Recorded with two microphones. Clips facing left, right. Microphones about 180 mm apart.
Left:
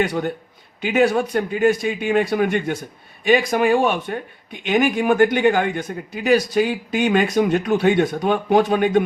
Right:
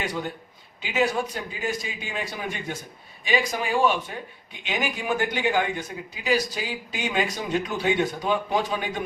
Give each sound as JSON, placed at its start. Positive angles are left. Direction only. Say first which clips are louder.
{"t": 0.0, "sound": "speech", "louder": "left 9 dB", "side_deg": 60}